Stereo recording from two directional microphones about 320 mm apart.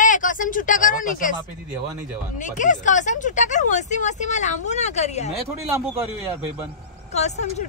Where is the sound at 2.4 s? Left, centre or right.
Left.